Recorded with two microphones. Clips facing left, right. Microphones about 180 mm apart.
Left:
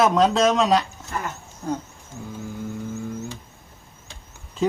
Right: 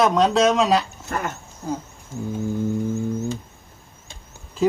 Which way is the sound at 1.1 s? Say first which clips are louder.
Right 3 dB; 60° right (ahead or behind).